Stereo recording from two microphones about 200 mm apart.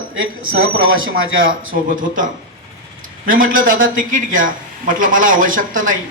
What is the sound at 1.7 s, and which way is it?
Speech, 40° right (ahead or behind).